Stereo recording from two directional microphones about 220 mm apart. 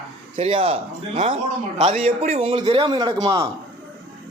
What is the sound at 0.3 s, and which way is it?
A man's voice, 25° right (ahead or behind).